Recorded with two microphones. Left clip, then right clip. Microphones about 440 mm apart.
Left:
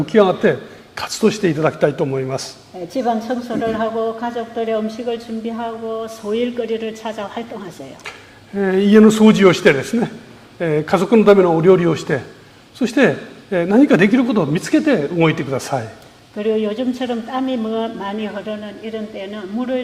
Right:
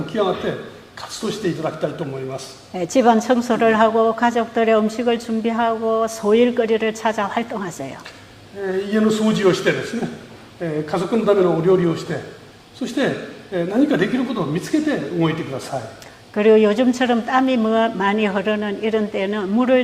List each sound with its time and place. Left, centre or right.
0.0 s a man's voice: left
2.9 s a woman's voice: right; by 7.7 s centre
8.6 s speech: left
16.3 s speech: centre